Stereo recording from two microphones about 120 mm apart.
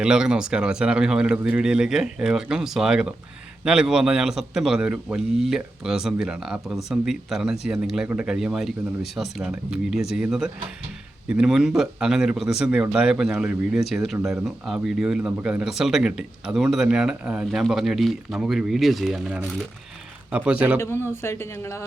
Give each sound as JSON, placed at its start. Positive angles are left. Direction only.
{"t": 0.0, "sound": "a man's voice", "side_deg": -5}
{"t": 20.7, "sound": "speech", "side_deg": 20}